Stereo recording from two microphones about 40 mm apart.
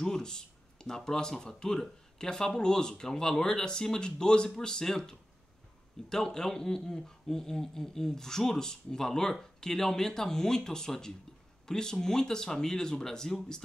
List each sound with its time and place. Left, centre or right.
0.0 s speech: centre